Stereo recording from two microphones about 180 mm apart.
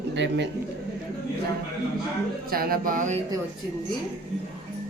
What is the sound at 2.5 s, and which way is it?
Speech, 55° right (ahead or behind).